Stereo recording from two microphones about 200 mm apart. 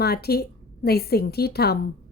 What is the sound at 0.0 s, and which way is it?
A woman's voice, 50° left (ahead or behind).